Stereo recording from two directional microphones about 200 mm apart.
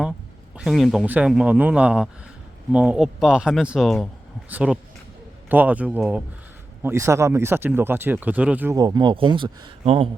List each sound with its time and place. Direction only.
0.5 s a man's voice: centre (ahead or behind)
8.8 s speech: 20° right (ahead or behind)